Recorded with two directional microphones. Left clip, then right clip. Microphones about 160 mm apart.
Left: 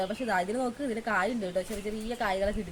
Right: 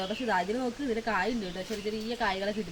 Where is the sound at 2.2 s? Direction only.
30° left (ahead or behind).